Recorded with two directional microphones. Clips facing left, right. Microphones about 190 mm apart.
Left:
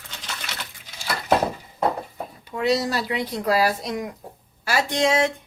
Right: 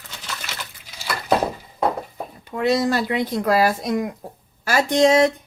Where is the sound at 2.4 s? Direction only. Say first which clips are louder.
Right 2 dB; 50° right (ahead or behind).